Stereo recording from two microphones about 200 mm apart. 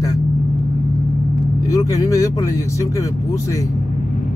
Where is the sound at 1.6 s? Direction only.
15° left (ahead or behind).